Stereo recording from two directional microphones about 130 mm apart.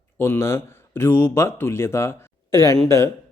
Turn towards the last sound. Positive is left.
turn(degrees=20)  # may be behind; listen again after turning